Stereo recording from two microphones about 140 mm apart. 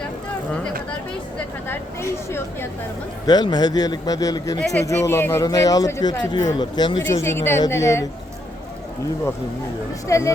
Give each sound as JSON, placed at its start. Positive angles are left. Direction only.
{"t": 1.6, "sound": "speech", "side_deg": 15}
{"t": 3.2, "sound": "a man's voice", "side_deg": 30}
{"t": 7.2, "sound": "a man's voice", "side_deg": 20}
{"t": 10.1, "sound": "a man's voice", "side_deg": 20}